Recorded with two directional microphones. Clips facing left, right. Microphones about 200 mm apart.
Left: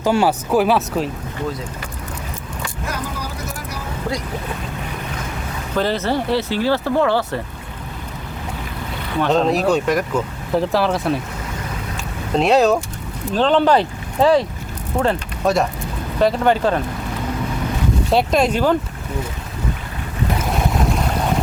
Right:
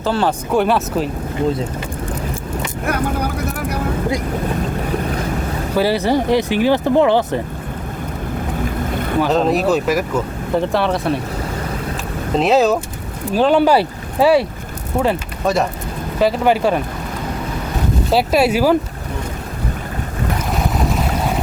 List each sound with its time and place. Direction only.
0.0 s speech: 10° left (ahead or behind)
2.8 s vehicle: 60° right (ahead or behind)
5.7 s speech: 10° right (ahead or behind)
8.9 s boat: 50° right (ahead or behind)
9.2 s speech: centre (ahead or behind)
12.3 s speech: centre (ahead or behind)
18.1 s speech: 5° right (ahead or behind)
20.7 s boat: centre (ahead or behind)